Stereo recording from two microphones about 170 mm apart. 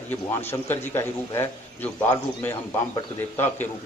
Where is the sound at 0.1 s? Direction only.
15° left (ahead or behind).